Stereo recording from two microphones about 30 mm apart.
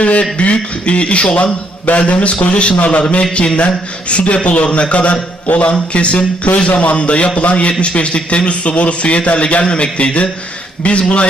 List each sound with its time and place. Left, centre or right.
0.0 s a sound: left
0.3 s speech: left
2.7 s a man's voice: left
3.3 s speech: left
4.1 s a man's voice: left
5.5 s speech: left
5.9 s a man's voice: left